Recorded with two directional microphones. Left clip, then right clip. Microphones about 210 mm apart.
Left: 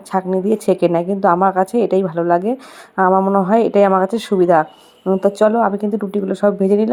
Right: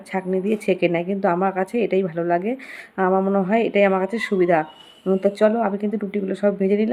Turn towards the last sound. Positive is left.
turn(degrees=15)  # may be behind; listen again after turning